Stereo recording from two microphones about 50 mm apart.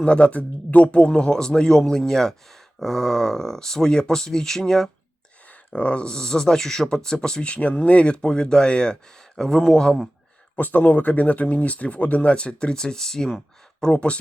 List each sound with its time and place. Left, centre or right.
0.0 s a man's voice: left; by 4.9 s centre
5.5 s a man's voice: left
7.4 s speech: left
10.6 s a man's voice: left; by 14.2 s centre